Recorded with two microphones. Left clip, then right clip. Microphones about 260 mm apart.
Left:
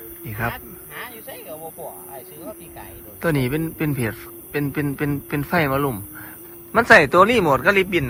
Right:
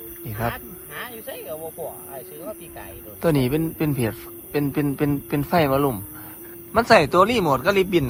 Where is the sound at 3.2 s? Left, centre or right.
Centre.